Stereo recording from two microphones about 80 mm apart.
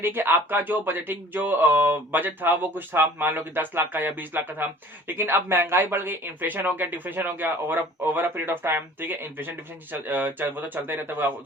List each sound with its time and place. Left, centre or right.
0.0 s speech: right